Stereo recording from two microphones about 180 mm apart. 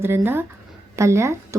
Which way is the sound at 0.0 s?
10° right (ahead or behind).